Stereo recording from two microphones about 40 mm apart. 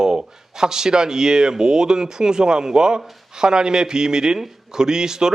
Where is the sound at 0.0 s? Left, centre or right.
Centre.